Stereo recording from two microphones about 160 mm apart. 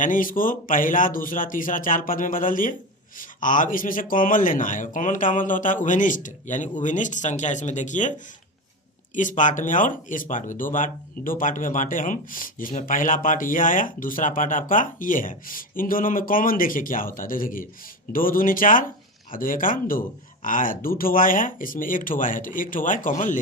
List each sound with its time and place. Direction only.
0.0 s speech: 55° left (ahead or behind)
9.1 s speech: 50° left (ahead or behind)